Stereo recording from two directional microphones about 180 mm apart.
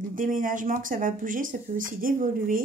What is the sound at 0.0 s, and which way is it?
Speech, 50° right (ahead or behind).